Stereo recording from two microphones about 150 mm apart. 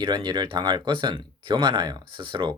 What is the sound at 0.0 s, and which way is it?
Speech, 30° right (ahead or behind).